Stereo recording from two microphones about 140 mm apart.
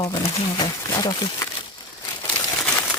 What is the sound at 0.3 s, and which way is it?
Speech, 35° left (ahead or behind).